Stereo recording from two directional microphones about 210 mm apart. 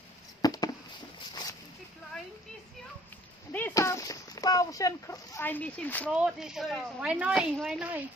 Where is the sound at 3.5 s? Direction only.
10° left (ahead or behind).